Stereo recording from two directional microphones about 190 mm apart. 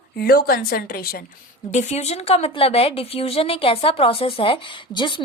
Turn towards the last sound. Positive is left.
turn(degrees=25)  # may be behind; listen again after turning